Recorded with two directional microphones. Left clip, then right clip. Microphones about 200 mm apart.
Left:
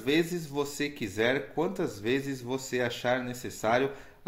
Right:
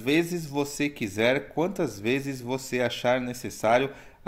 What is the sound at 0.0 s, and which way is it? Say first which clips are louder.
Speech: right 3 dB; 35° right (ahead or behind).